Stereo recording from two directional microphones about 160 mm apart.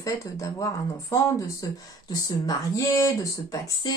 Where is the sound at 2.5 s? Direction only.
20° left (ahead or behind).